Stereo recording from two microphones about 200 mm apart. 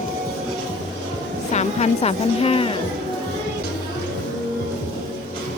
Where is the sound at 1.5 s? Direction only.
30° left (ahead or behind).